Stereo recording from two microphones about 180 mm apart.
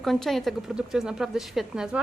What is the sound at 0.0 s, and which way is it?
Speech, centre (ahead or behind).